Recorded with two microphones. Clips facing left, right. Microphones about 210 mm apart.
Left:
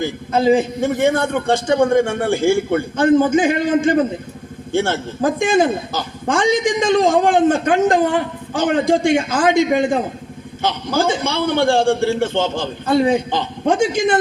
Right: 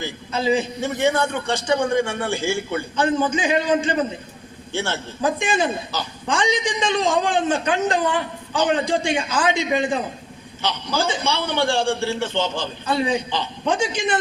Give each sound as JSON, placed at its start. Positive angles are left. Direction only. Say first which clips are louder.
{"t": 0.0, "sound": "a man's voice", "louder": "left 7 dB", "side_deg": 50}